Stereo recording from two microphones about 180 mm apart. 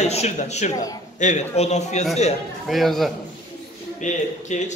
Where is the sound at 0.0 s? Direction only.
35° left (ahead or behind).